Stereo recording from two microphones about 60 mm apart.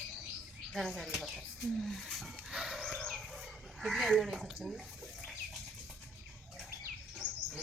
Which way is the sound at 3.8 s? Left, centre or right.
Centre.